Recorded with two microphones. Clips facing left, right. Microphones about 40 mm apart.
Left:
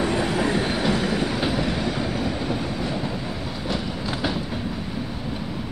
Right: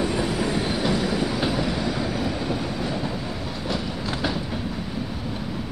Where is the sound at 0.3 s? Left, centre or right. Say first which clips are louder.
Left 2 dB; left.